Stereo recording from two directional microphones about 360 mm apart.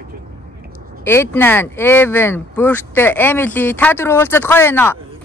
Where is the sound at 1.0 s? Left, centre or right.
Centre.